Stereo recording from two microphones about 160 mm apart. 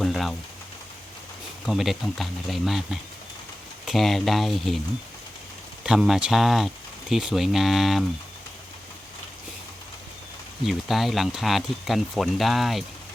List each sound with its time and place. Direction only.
0.0 s rain on surface: centre (ahead or behind)
1.6 s speech: centre (ahead or behind)
5.8 s speech: 5° right (ahead or behind)
10.7 s speech: centre (ahead or behind)